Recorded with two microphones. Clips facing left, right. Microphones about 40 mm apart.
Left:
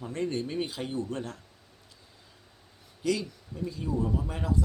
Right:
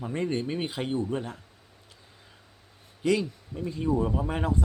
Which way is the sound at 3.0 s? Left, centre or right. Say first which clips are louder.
Right 4 dB; right.